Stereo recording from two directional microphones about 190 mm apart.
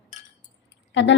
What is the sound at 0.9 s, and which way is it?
Speech, 70° left (ahead or behind).